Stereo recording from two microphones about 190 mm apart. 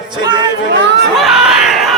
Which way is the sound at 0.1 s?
20° right (ahead or behind).